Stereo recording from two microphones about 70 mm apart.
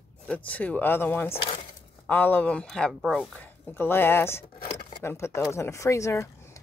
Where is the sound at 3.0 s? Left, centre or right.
Centre.